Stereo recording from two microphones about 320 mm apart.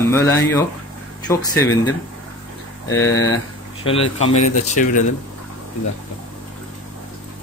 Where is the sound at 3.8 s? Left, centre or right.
Centre.